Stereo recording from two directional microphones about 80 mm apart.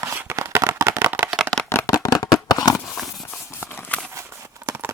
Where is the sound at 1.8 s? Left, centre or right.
Left.